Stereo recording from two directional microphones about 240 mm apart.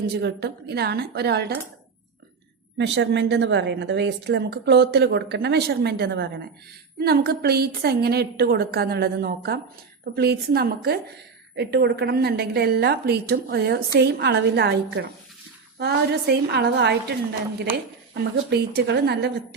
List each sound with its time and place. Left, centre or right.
0.2 s a woman's voice: right
2.7 s a woman's voice: right